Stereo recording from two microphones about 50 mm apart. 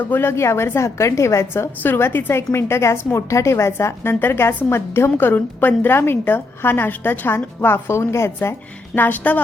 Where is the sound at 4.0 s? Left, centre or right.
Left.